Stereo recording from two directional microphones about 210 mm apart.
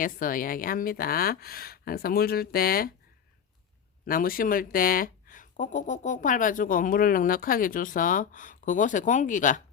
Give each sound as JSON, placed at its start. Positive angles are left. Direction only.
{"t": 0.0, "sound": "speech", "side_deg": 40}
{"t": 4.0, "sound": "speech", "side_deg": 45}